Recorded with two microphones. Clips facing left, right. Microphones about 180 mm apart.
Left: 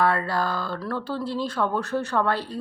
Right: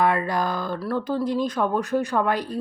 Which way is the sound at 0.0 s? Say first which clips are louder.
Right 1 dB; 15° right (ahead or behind).